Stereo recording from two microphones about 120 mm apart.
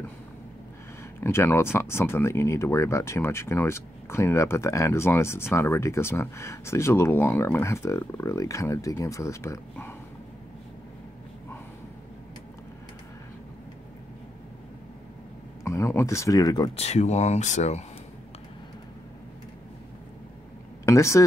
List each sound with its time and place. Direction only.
1.2 s speech: 20° left (ahead or behind)
15.6 s speech: 25° left (ahead or behind)
16.7 s speech: 65° left (ahead or behind)
20.8 s a sound: 25° left (ahead or behind)